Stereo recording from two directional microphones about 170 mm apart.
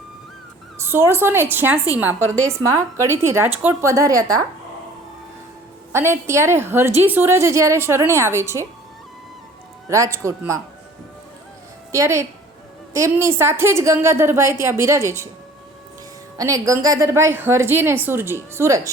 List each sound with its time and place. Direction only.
0.8 s a woman's voice: 15° right (ahead or behind)
5.9 s a woman's voice: 15° right (ahead or behind)
9.9 s a woman's voice: 15° right (ahead or behind)
11.9 s a woman's voice: 15° right (ahead or behind)
16.4 s a woman's voice: 20° right (ahead or behind)